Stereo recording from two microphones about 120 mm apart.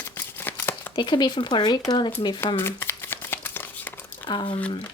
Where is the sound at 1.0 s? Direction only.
40° left (ahead or behind).